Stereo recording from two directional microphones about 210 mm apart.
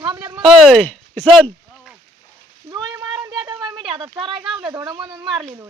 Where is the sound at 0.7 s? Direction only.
5° left (ahead or behind).